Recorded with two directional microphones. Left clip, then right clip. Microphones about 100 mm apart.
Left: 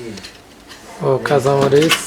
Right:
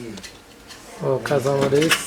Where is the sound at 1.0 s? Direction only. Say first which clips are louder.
Left 6 dB; 25° left (ahead or behind).